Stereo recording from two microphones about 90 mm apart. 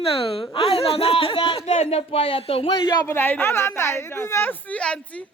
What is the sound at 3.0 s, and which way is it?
A woman's voice, 25° left (ahead or behind).